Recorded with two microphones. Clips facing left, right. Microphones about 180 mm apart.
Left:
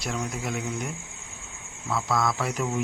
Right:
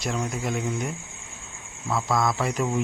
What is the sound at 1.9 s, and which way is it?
Speech, 15° right (ahead or behind).